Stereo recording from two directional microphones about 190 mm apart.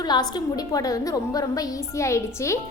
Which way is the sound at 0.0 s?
20° left (ahead or behind).